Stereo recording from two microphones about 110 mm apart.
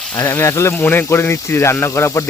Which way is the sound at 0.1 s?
25° left (ahead or behind).